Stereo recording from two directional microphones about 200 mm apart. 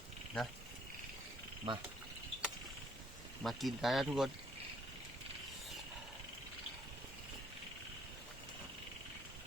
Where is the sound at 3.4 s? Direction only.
Centre (ahead or behind).